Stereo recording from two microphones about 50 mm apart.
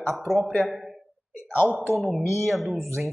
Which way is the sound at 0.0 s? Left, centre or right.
Centre.